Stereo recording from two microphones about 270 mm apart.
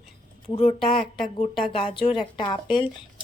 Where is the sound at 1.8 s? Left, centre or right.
Centre.